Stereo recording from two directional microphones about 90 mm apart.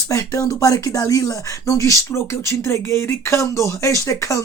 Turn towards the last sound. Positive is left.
turn(degrees=35)  # may be behind; listen again after turning